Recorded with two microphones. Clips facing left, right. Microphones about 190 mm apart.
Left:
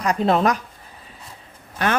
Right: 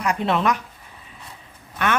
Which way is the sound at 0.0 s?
35° left (ahead or behind).